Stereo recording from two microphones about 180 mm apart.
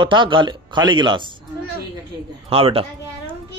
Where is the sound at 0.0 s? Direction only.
25° right (ahead or behind).